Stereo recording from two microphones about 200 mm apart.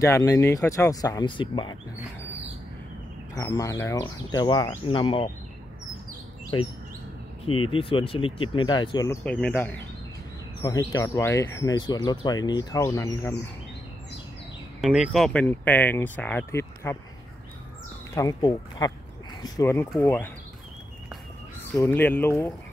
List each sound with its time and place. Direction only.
0.0 s speech: 15° left (ahead or behind)
3.3 s speech: 15° left (ahead or behind)
6.5 s speech: 20° left (ahead or behind)
7.7 s speech: 25° left (ahead or behind)
9.2 s speech: 5° left (ahead or behind)
14.8 s speech: centre (ahead or behind)
18.1 s speech: 20° left (ahead or behind)
21.7 s speech: 10° left (ahead or behind)